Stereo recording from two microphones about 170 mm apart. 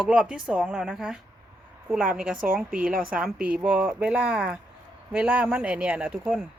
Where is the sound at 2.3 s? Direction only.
55° right (ahead or behind).